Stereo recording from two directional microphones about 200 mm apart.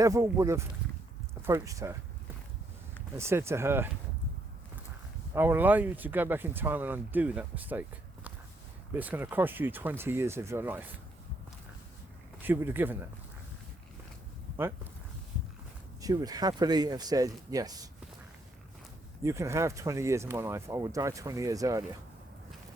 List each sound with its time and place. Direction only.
0.0 s speech: 15° right (ahead or behind)
3.2 s speech: 15° right (ahead or behind)
5.3 s speech: 10° right (ahead or behind)
12.4 s speech: 10° right (ahead or behind)
16.0 s speech: 20° right (ahead or behind)
19.2 s speech: 15° right (ahead or behind)